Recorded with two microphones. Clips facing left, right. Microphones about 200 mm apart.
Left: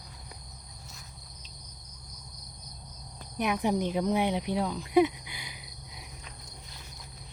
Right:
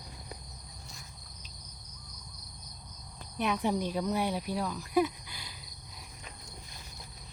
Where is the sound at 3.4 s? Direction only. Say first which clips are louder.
Left 2 dB; 10° left (ahead or behind).